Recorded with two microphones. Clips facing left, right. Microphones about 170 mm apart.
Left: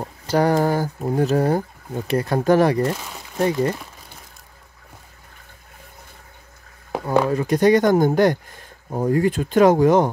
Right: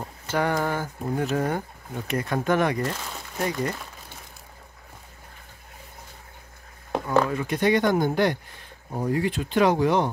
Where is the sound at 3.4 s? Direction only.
30° left (ahead or behind).